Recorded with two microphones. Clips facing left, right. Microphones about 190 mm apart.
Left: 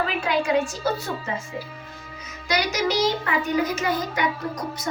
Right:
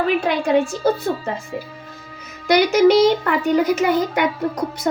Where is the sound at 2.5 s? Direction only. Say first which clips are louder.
Right 11 dB; 60° right (ahead or behind).